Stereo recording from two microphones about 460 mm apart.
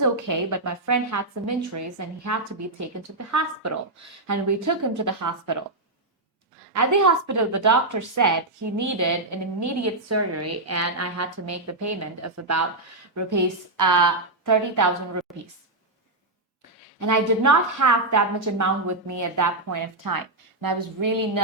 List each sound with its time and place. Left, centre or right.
0.0 s a woman's voice: right
6.7 s a woman's voice: right
13.1 s a woman's voice: right
17.0 s a woman's voice: right